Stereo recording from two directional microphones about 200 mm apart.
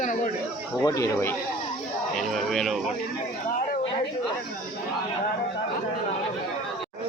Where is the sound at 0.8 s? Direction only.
15° left (ahead or behind).